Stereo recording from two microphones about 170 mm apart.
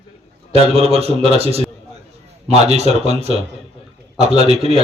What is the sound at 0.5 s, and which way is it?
Speech, 35° right (ahead or behind).